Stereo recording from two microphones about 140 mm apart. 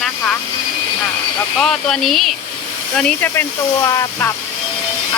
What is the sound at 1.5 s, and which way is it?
Speech, 5° left (ahead or behind).